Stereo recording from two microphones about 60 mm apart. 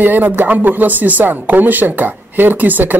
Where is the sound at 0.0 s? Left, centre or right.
Right.